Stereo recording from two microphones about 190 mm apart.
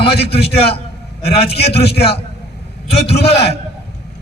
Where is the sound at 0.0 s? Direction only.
55° left (ahead or behind).